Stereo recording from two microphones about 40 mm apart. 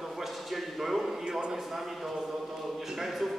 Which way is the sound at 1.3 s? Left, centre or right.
Right.